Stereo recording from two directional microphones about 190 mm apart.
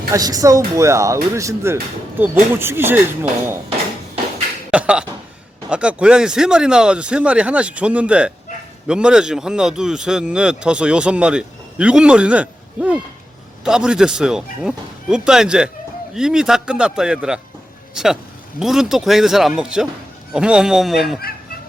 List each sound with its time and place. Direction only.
0.1 s speech: 20° right (ahead or behind)
4.7 s speech: 5° right (ahead or behind)